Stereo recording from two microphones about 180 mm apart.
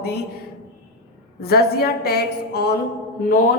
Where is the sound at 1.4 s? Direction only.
60° left (ahead or behind).